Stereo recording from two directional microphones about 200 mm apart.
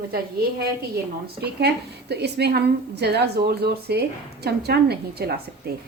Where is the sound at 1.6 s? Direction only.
55° right (ahead or behind).